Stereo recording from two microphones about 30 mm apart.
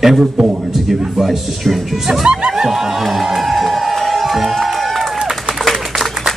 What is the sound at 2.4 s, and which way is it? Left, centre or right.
Music, right.